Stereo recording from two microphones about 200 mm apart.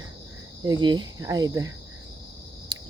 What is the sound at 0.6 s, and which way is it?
Cricket, 20° right (ahead or behind).